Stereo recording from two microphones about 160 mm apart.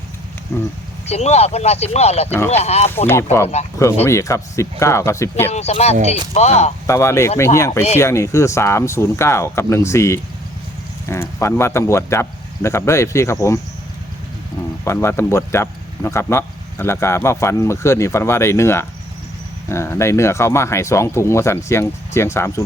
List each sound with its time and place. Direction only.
0.5 s a sound: 15° left (ahead or behind)
1.0 s speech: 40° left (ahead or behind)
4.0 s speech: 20° left (ahead or behind)
5.5 s speech: 40° left (ahead or behind)
6.8 s speech: 15° left (ahead or behind)
14.8 s speech: 15° left (ahead or behind)